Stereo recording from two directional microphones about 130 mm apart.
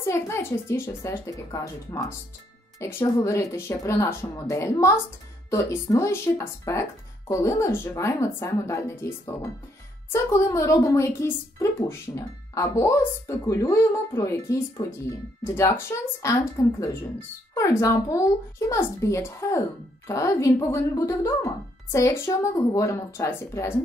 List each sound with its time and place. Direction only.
0.0 s speech: 20° left (ahead or behind)